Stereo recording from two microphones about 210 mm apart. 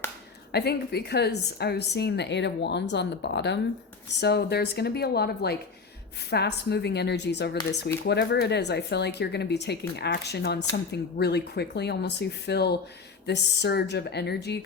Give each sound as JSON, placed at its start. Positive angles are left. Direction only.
{"t": 0.5, "sound": "a woman's voice", "side_deg": 50}